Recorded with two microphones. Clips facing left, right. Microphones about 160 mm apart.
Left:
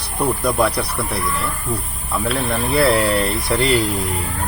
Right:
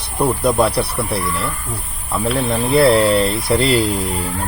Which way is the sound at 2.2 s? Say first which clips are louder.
Right 3 dB; 20° right (ahead or behind).